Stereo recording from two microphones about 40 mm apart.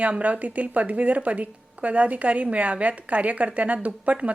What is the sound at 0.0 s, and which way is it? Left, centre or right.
Speech, right.